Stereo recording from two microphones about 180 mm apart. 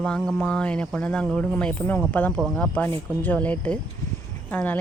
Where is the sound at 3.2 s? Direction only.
10° left (ahead or behind).